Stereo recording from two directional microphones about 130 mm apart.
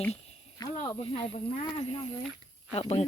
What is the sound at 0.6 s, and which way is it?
Speech, 35° left (ahead or behind).